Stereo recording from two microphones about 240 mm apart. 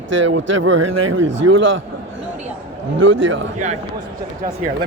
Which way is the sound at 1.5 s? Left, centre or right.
Right.